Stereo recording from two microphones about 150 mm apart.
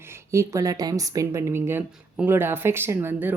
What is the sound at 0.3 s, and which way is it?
A woman's voice, 20° right (ahead or behind).